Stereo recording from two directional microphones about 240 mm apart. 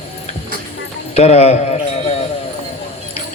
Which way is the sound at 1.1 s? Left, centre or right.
Left.